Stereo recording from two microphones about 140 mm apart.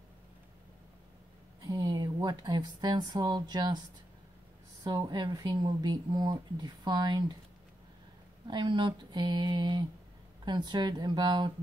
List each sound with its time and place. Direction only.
1.6 s speech: 30° right (ahead or behind)
4.8 s speech: 30° right (ahead or behind)
8.5 s speech: 35° right (ahead or behind)